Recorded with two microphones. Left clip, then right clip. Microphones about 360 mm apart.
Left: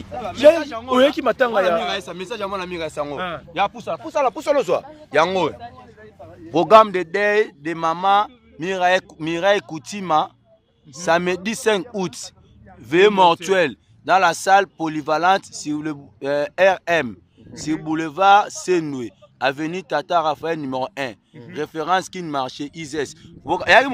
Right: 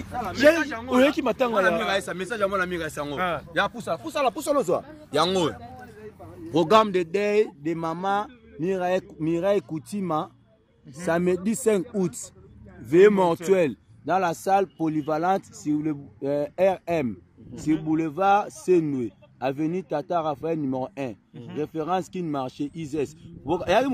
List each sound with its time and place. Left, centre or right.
0.3 s a man's voice: centre
0.9 s speech: centre
1.4 s speech: left
1.9 s a man's voice: centre
3.2 s a man's voice: centre
4.6 s a man's voice: left
12.9 s speech: left